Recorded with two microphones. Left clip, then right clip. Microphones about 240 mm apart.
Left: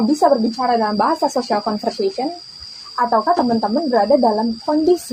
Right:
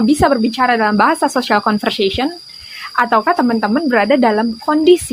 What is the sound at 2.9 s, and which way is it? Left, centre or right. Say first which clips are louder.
Speech: right 3 dB; right.